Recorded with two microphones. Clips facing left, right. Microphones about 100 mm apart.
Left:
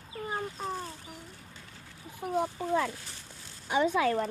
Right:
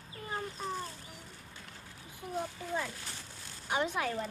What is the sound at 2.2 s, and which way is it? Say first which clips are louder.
Speech: left 8 dB; 80° left.